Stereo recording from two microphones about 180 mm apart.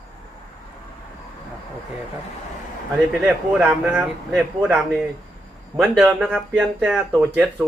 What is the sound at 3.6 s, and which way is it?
Speech, 5° right (ahead or behind).